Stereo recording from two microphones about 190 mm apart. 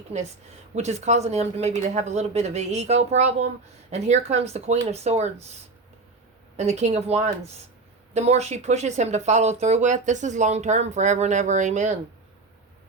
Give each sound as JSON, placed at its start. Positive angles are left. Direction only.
{"t": 0.8, "sound": "speech", "side_deg": -35}